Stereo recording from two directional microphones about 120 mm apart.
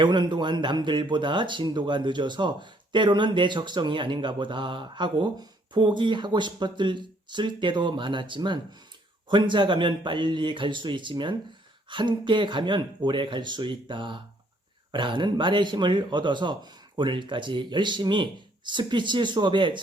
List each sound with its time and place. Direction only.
0.0 s speech: 40° right (ahead or behind)